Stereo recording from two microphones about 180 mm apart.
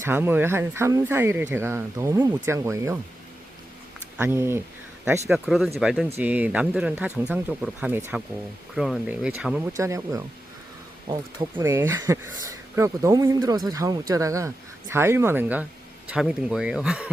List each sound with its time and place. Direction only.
0.0 s speech: 10° right (ahead or behind)
4.2 s speech: 15° right (ahead or behind)
5.3 s speech: centre (ahead or behind)
9.7 s speech: 15° right (ahead or behind)
11.6 s speech: 15° right (ahead or behind)